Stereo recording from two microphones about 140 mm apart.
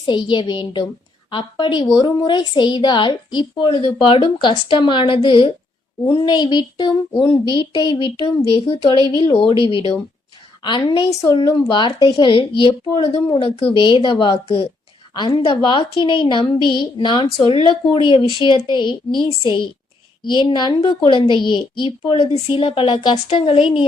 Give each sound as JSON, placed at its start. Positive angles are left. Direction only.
{"t": 0.1, "sound": "a woman's voice", "side_deg": 35}